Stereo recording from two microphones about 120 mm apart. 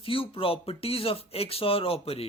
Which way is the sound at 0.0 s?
50° left (ahead or behind).